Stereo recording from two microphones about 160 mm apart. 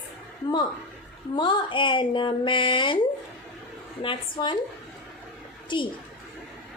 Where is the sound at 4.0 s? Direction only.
30° left (ahead or behind).